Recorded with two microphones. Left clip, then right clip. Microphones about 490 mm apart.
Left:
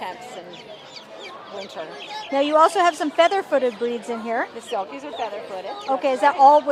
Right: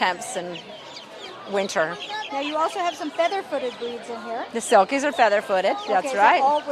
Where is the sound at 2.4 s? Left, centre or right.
Left.